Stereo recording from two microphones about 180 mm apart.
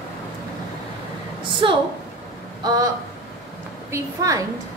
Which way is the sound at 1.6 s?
30° right (ahead or behind).